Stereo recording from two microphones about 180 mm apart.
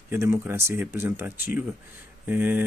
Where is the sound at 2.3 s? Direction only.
10° right (ahead or behind).